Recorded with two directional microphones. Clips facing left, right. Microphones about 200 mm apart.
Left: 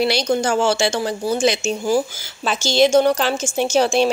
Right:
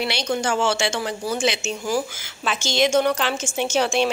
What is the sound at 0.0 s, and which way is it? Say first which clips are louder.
Speech: left 6 dB; 35° left (ahead or behind).